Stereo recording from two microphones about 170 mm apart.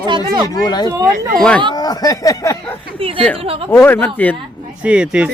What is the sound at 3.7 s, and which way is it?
Speech, 10° left (ahead or behind).